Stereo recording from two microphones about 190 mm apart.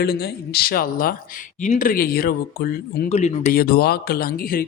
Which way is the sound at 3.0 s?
35° left (ahead or behind).